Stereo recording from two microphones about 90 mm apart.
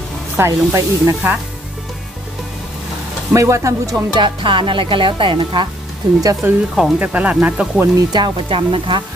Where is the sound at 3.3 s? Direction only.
35° right (ahead or behind).